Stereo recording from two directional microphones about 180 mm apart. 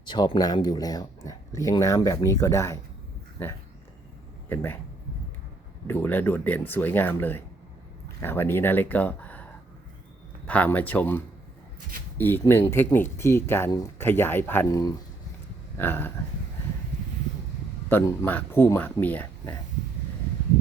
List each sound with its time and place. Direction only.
0.0 s speech: 25° left (ahead or behind)
5.9 s speech: 10° left (ahead or behind)
17.8 s speech: 15° left (ahead or behind)